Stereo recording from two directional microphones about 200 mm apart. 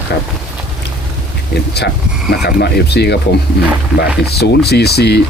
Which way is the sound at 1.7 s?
55° left (ahead or behind).